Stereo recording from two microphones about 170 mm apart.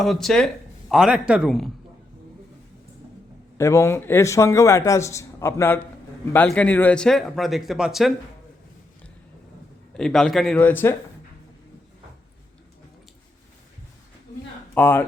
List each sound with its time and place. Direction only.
0.0 s speech: centre (ahead or behind)
3.6 s speech: 15° left (ahead or behind); by 8.1 s centre (ahead or behind)
9.9 s speech: 5° left (ahead or behind)
14.8 s speech: 10° left (ahead or behind)